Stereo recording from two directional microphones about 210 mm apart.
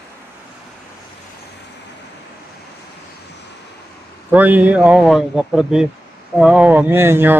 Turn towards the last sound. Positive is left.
turn(degrees=-10)  # may be behind; listen again after turning